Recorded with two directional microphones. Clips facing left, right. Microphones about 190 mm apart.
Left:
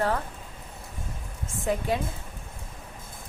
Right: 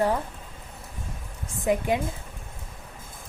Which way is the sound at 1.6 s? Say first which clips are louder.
Right 3 dB; 15° right (ahead or behind).